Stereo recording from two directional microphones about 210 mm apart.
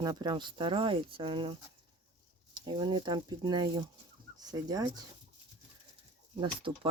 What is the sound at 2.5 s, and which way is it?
Speech, 20° right (ahead or behind).